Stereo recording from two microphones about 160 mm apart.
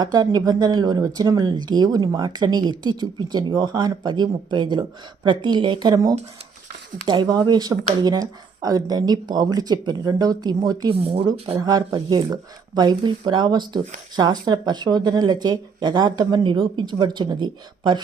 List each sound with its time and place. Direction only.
0.0 s speech: 25° right (ahead or behind)
11.0 s speech: 35° right (ahead or behind)
11.6 s speech: 25° right (ahead or behind)